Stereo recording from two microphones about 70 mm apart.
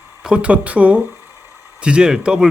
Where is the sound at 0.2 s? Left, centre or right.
Centre.